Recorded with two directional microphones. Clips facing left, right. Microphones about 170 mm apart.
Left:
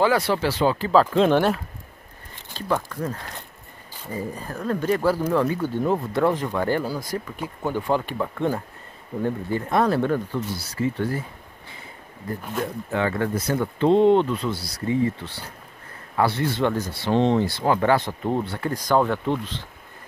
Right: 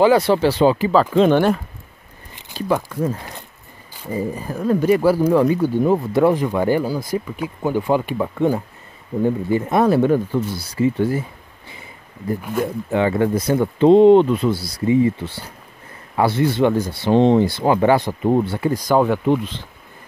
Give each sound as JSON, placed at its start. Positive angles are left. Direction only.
{"t": 0.0, "sound": "speech", "side_deg": -25}
{"t": 0.7, "sound": "speech", "side_deg": -5}
{"t": 2.5, "sound": "speech", "side_deg": -10}
{"t": 7.0, "sound": "speech", "side_deg": -5}
{"t": 12.3, "sound": "speech", "side_deg": -5}
{"t": 12.9, "sound": "speech", "side_deg": -15}